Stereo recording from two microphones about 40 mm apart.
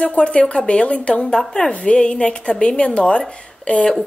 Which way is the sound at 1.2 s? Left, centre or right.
Centre.